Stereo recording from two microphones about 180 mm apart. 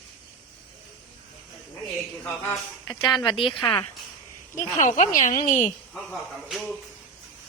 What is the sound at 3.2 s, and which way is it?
Speech, 25° left (ahead or behind).